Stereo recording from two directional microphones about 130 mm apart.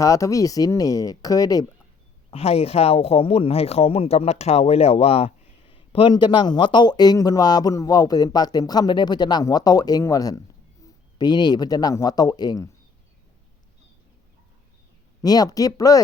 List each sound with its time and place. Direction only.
0.0 s speech: 25° left (ahead or behind)
2.3 s speech: 50° left (ahead or behind); by 12.6 s 30° left (ahead or behind)
15.2 s speech: 30° left (ahead or behind)